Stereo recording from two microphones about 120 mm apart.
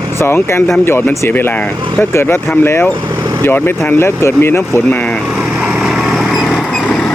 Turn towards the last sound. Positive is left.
turn(degrees=0)  # may be behind; listen again after turning